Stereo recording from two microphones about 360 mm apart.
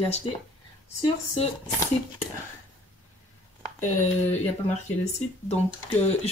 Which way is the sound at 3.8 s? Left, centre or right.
Centre.